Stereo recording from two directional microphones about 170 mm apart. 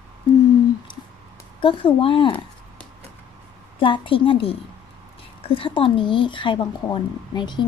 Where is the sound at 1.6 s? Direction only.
30° left (ahead or behind).